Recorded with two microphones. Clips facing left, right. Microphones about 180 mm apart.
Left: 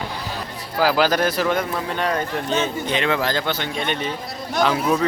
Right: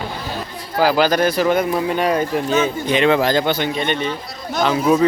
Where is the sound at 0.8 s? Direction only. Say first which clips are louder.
Right 3 dB; centre (ahead or behind).